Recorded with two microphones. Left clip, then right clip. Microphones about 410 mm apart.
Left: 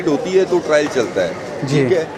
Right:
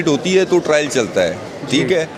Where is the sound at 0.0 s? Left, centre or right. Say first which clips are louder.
Right 1 dB; right.